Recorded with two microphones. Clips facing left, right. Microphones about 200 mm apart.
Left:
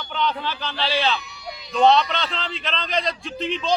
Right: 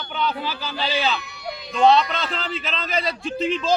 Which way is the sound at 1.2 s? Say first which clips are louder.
Right 4 dB; 60° right (ahead or behind).